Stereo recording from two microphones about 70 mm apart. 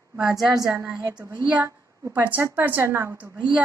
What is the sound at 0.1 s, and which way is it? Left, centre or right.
Speech, centre.